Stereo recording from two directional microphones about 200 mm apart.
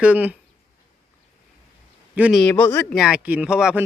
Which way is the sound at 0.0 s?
5° right (ahead or behind).